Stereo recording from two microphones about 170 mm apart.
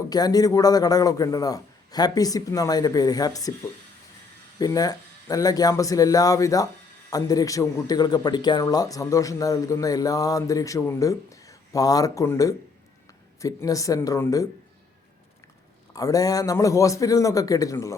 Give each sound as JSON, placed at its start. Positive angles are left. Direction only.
{"t": 0.1, "sound": "a man's voice", "side_deg": 20}
{"t": 4.6, "sound": "a man's voice", "side_deg": 20}
{"t": 15.9, "sound": "a man's voice", "side_deg": 20}